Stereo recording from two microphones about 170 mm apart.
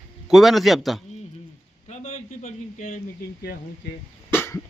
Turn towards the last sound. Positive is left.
turn(degrees=15)  # may be behind; listen again after turning